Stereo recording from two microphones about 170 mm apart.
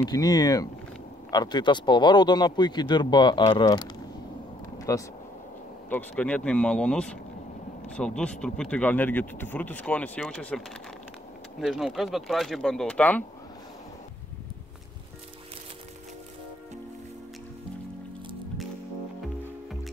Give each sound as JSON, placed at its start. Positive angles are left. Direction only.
{"t": 0.0, "sound": "speech", "side_deg": 20}
{"t": 5.9, "sound": "speech", "side_deg": 10}